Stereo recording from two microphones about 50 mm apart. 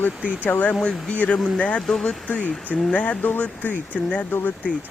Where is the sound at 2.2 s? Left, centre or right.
Left.